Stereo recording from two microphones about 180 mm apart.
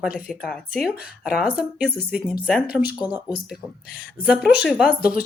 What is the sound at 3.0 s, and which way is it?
Speech, 25° left (ahead or behind).